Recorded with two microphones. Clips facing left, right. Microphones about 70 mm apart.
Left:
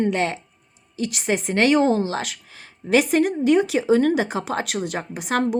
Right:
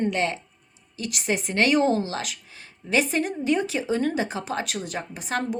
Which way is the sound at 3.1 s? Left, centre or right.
Left.